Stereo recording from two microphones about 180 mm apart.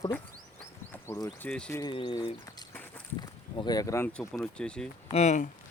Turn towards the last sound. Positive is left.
turn(degrees=40)  # may be behind; listen again after turning